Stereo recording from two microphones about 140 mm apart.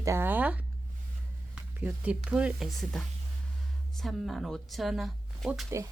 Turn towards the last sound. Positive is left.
turn(degrees=0)  # may be behind; listen again after turning